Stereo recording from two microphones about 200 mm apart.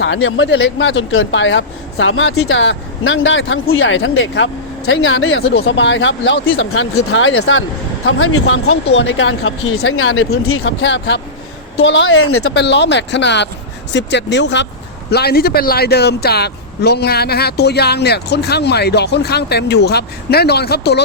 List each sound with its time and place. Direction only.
0.0 s speech: 70° left (ahead or behind)
4.9 s speech: 90° left
9.0 s speech: 70° left (ahead or behind)
15.1 s speech: 50° left (ahead or behind)